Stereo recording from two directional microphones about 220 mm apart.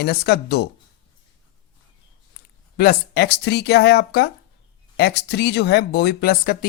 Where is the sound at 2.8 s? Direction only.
45° left (ahead or behind).